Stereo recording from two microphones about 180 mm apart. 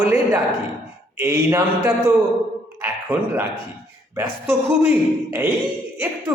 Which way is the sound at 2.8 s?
10° right (ahead or behind).